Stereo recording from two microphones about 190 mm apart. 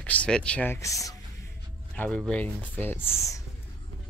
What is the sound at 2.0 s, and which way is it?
Speech, 5° left (ahead or behind).